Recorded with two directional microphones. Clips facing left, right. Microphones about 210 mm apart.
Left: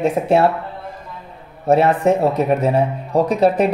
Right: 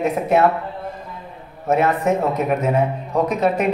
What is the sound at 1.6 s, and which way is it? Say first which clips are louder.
Speech: left 4 dB; 30° left (ahead or behind).